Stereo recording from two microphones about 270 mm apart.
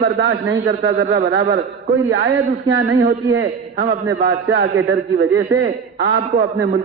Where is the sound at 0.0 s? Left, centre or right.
Right.